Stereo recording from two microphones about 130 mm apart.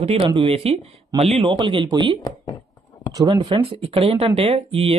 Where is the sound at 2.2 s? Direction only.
25° left (ahead or behind).